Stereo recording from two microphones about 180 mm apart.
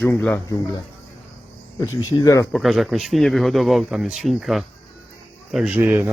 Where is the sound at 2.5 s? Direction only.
Centre (ahead or behind).